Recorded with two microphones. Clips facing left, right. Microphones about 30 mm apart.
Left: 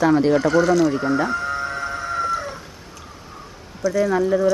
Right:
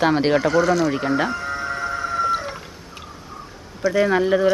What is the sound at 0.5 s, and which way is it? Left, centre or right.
Speech, centre.